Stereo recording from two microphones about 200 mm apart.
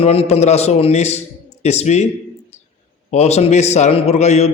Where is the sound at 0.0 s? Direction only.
30° left (ahead or behind).